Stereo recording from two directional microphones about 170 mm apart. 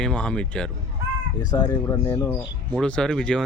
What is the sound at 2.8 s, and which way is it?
Speech, 5° left (ahead or behind).